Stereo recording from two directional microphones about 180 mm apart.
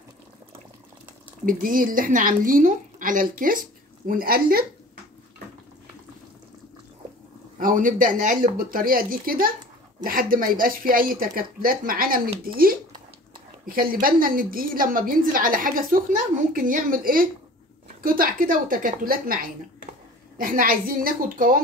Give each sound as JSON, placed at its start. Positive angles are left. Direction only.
{"t": 1.4, "sound": "a woman's voice", "side_deg": -50}
{"t": 7.5, "sound": "a woman's voice", "side_deg": -50}
{"t": 13.7, "sound": "a woman's voice", "side_deg": -50}